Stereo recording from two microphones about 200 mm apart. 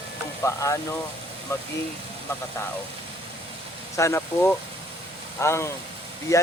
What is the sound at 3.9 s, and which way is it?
Speech, 15° left (ahead or behind).